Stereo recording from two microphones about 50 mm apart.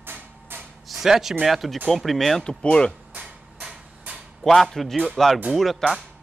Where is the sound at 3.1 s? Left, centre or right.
Right.